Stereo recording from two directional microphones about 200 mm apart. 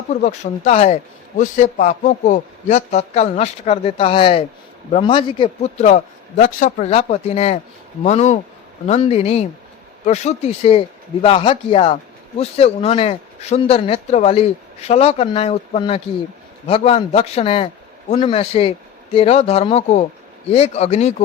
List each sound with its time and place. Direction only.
0.1 s a man's voice: 35° left (ahead or behind)